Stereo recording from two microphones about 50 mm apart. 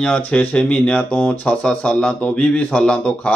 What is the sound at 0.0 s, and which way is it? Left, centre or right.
Speech, left.